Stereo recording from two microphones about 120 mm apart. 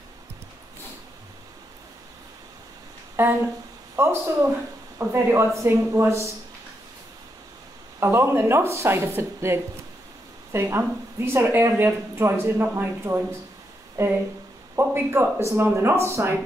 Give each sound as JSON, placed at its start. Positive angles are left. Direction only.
{"t": 3.2, "sound": "speech", "side_deg": -20}
{"t": 8.0, "sound": "speech", "side_deg": -20}